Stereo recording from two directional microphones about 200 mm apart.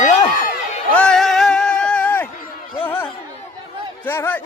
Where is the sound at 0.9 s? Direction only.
5° left (ahead or behind).